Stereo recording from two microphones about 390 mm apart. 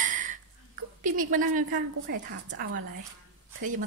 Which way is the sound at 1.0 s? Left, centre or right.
Right.